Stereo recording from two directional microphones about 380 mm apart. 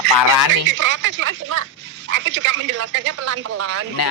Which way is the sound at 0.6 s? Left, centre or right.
Right.